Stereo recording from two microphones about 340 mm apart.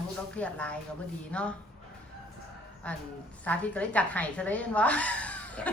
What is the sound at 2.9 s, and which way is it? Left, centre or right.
A woman's voice, centre.